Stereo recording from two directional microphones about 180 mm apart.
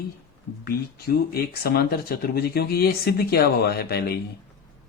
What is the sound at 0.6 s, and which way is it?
Speech, 60° left (ahead or behind).